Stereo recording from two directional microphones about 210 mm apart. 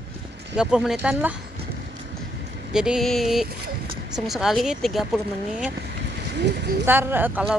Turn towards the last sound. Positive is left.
turn(degrees=-5)  # may be behind; listen again after turning